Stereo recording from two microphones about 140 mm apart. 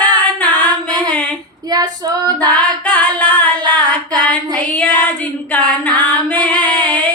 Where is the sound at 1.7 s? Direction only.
30° right (ahead or behind).